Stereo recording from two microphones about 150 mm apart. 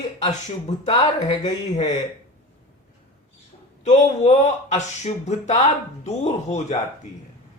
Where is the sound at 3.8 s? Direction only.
50° left (ahead or behind).